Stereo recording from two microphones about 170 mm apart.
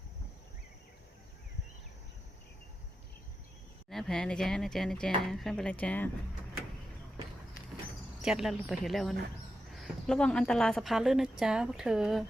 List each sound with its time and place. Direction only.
3.8 s a woman's voice: centre (ahead or behind)
8.2 s a woman's voice: 5° right (ahead or behind)